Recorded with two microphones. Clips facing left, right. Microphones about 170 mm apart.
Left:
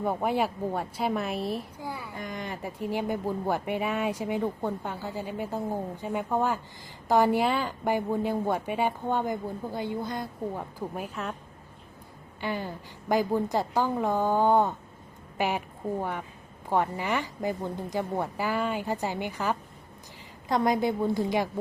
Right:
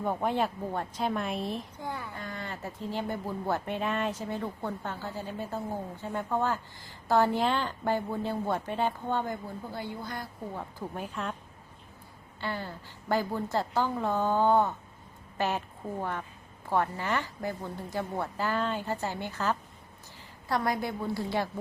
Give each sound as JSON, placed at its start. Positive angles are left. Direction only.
{"t": 0.0, "sound": "a woman's voice", "side_deg": 10}
{"t": 12.4, "sound": "a woman's voice", "side_deg": 15}